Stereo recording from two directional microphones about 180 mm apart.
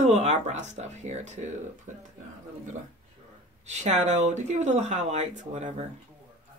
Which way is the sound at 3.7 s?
40° right (ahead or behind).